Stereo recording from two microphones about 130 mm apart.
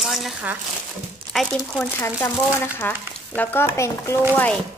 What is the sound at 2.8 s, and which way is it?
Speech, 15° left (ahead or behind).